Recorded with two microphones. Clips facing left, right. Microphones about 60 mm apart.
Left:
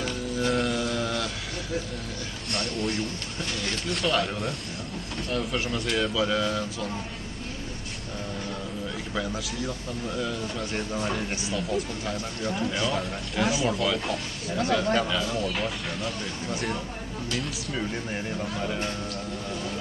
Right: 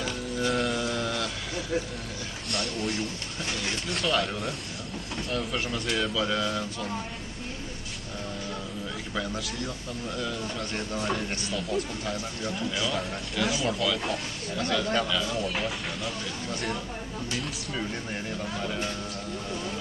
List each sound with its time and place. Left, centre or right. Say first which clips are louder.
0.0 s mantra: left 1 dB; centre
2.5 s speech: left 2 dB; centre
9.1 s speech: left 1 dB; centre
12.5 s speech: left 3 dB; centre
12.8 s speech: left 2 dB; centre
14.5 s speech: left 3 dB; centre